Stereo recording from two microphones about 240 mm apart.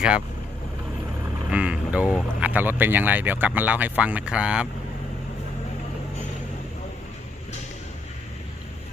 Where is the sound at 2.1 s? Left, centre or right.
Centre.